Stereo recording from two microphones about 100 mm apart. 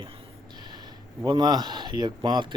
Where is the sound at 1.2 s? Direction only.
45° right (ahead or behind).